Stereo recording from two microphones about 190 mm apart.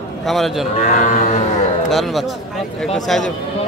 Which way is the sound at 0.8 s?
40° left (ahead or behind).